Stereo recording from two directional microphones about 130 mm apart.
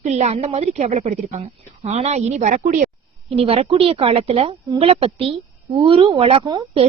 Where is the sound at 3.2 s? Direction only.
50° right (ahead or behind).